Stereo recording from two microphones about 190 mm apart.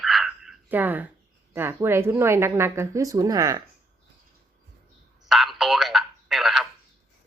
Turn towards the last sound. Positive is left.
turn(degrees=0)  # may be behind; listen again after turning